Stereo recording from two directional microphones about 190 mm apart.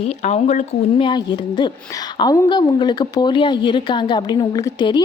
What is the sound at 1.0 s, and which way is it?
A woman's voice, 25° left (ahead or behind).